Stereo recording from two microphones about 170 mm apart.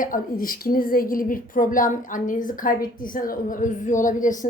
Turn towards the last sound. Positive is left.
turn(degrees=50)  # may be behind; listen again after turning